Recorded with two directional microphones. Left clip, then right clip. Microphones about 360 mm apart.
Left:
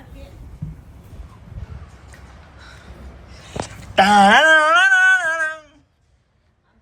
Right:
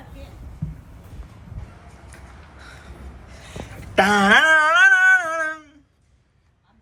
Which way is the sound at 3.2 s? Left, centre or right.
Centre.